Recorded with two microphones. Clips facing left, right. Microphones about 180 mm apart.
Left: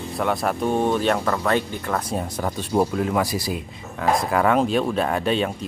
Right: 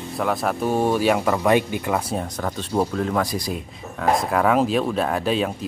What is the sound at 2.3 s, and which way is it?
Speech, 10° left (ahead or behind).